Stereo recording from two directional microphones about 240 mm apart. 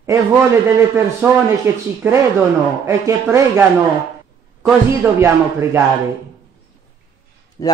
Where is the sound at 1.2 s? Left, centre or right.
Centre.